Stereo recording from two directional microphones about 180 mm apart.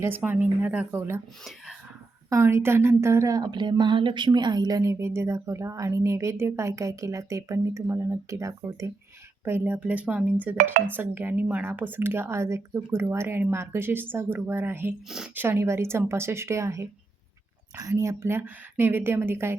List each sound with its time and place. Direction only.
0.0 s a woman's voice: 10° right (ahead or behind)
2.3 s a woman's voice: 15° right (ahead or behind)